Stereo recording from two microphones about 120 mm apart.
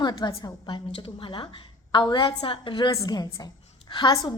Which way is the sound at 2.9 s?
30° left (ahead or behind).